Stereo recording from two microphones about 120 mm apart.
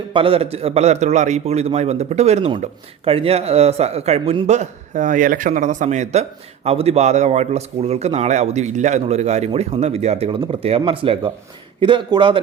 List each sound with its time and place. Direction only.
0.1 s a man's voice: 50° right (ahead or behind); by 2.5 s 65° right (ahead or behind)
3.0 s a man's voice: 50° right (ahead or behind)
4.4 s speech: 70° right (ahead or behind)
6.7 s a man's voice: 60° right (ahead or behind)
9.5 s speech: 50° right (ahead or behind)
9.8 s a man's voice: 65° right (ahead or behind); by 12.4 s 45° right (ahead or behind)